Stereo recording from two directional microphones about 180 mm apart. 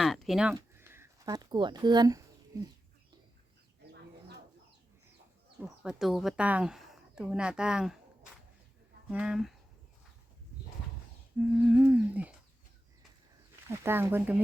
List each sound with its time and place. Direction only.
0.0 s a sound: centre (ahead or behind)
0.5 s a sound: 15° right (ahead or behind)
5.5 s speech: 5° right (ahead or behind)
9.0 s humming: 5° right (ahead or behind)
11.3 s humming: 10° right (ahead or behind)
13.7 s humming: 15° right (ahead or behind)